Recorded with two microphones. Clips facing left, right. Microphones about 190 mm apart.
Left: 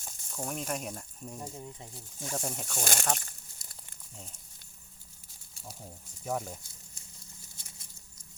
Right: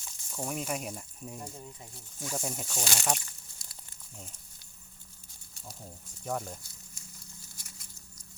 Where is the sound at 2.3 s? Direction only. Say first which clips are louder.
Even; centre (ahead or behind).